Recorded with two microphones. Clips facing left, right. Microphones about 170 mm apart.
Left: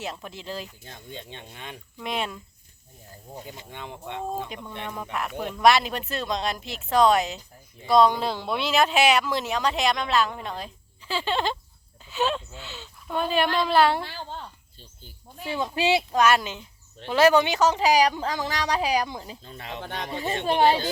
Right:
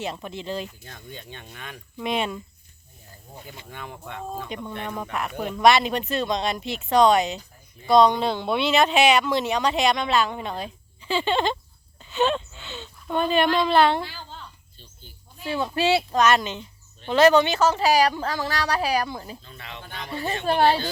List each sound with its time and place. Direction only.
0.0 s speech: centre (ahead or behind)
0.9 s speech: 25° left (ahead or behind)
2.0 s speech: centre (ahead or behind)
3.7 s speech: 20° left (ahead or behind)
5.1 s speech: centre (ahead or behind)
14.3 s insect: 40° left (ahead or behind)
15.4 s speech: 15° left (ahead or behind)
19.5 s speech: 40° left (ahead or behind)
20.1 s speech: 20° left (ahead or behind)